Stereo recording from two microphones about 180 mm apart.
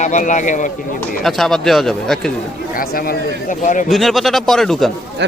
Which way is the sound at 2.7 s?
55° left (ahead or behind).